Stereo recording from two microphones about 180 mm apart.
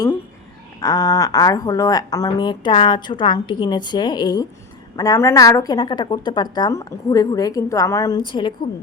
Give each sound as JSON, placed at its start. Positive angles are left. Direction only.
{"t": 0.8, "sound": "a woman's voice", "side_deg": 20}